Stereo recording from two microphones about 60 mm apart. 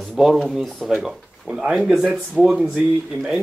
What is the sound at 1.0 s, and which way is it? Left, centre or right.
Speech, centre.